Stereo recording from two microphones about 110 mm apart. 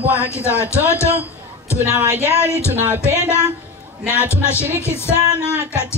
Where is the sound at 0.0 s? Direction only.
15° right (ahead or behind).